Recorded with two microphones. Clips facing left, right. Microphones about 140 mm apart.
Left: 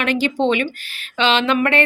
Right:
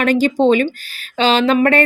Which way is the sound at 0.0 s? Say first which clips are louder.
Right 5 dB; 40° right (ahead or behind).